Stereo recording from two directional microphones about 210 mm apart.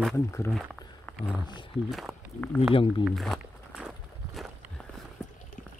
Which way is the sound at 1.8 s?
Centre (ahead or behind).